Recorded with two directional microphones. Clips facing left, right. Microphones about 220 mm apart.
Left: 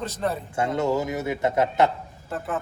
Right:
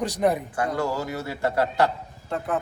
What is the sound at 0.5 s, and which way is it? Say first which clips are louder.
A man's voice: left 3 dB; 25° left (ahead or behind).